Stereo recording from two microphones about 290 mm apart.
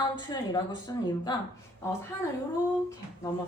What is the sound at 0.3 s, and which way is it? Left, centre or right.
Speech, centre.